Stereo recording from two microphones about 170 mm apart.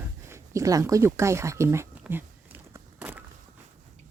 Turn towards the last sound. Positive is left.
turn(degrees=-10)  # may be behind; listen again after turning